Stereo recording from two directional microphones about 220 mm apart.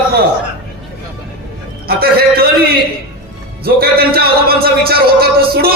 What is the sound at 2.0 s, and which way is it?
A man's voice, 45° right (ahead or behind).